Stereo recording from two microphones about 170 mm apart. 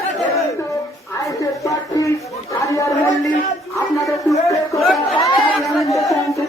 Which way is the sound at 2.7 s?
20° left (ahead or behind).